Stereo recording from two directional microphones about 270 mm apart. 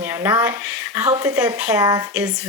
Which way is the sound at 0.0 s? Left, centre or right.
Centre.